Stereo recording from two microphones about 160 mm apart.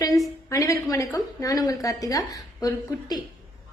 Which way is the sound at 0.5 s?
20° left (ahead or behind).